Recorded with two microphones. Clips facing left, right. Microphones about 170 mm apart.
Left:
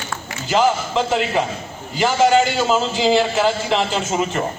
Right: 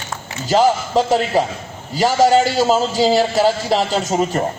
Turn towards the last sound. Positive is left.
turn(degrees=-40)  # may be behind; listen again after turning